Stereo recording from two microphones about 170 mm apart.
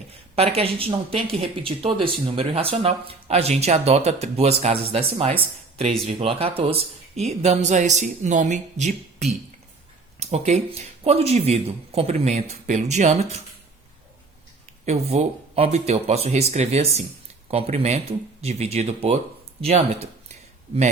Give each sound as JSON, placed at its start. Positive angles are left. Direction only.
{"t": 0.3, "sound": "speech", "side_deg": -35}
{"t": 14.8, "sound": "speech", "side_deg": -40}